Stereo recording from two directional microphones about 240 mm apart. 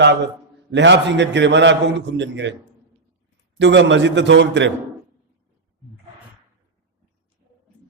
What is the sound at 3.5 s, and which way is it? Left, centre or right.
A man's voice, right.